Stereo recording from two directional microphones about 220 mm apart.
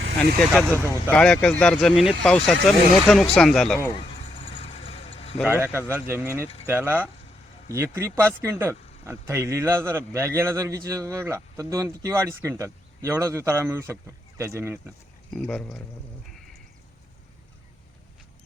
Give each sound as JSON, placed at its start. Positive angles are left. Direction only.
{"t": 0.2, "sound": "speech", "side_deg": 5}
{"t": 3.9, "sound": "vehicle", "side_deg": 25}
{"t": 5.6, "sound": "a man's voice", "side_deg": -10}
{"t": 15.3, "sound": "speech", "side_deg": 0}